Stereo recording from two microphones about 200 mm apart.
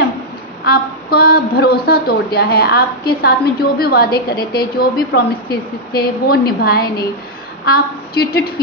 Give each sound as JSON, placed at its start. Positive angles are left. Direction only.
{"t": 0.7, "sound": "a woman's voice", "side_deg": 50}